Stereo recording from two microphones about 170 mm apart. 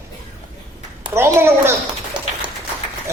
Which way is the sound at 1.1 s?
15° right (ahead or behind).